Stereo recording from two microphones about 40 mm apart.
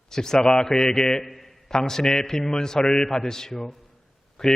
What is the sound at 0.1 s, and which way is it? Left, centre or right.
A man's voice, centre.